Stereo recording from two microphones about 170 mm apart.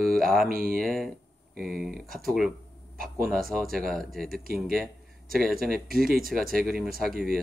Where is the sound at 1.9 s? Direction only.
60° right (ahead or behind).